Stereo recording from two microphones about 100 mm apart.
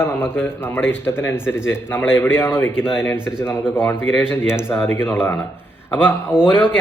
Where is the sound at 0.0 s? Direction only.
25° left (ahead or behind).